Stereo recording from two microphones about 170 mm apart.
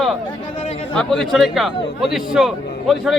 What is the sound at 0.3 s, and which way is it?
Speech, 30° left (ahead or behind).